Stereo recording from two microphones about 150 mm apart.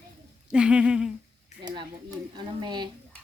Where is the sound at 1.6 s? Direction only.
30° right (ahead or behind).